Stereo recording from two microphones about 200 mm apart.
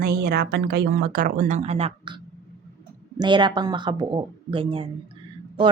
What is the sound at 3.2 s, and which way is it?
A woman's voice, 25° right (ahead or behind).